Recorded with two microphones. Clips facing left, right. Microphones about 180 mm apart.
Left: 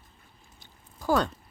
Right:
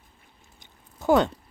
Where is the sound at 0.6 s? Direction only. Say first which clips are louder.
Right 6 dB; 20° right (ahead or behind).